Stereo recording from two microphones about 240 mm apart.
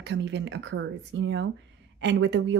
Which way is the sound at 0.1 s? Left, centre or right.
Right.